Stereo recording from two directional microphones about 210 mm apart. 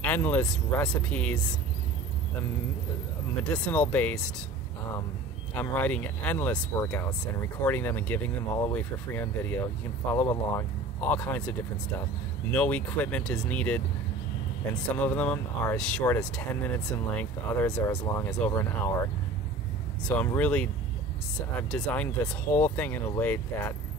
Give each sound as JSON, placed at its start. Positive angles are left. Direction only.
{"t": 0.0, "sound": "speech", "side_deg": 10}
{"t": 3.6, "sound": "speech", "side_deg": 5}
{"t": 5.5, "sound": "speech", "side_deg": 10}
{"t": 12.5, "sound": "speech", "side_deg": 5}
{"t": 15.0, "sound": "speech", "side_deg": 5}
{"t": 20.1, "sound": "speech", "side_deg": 10}